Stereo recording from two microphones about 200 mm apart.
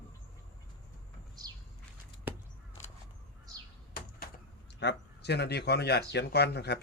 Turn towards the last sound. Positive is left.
turn(degrees=55)  # may be behind; listen again after turning